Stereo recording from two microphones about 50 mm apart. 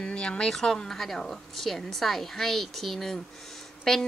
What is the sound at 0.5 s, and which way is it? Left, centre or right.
A woman's voice, centre.